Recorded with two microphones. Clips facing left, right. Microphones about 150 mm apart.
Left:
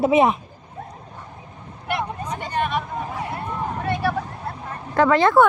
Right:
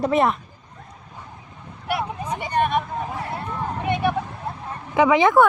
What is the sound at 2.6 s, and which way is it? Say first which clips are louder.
Hubbub: right 3 dB; 50° right (ahead or behind).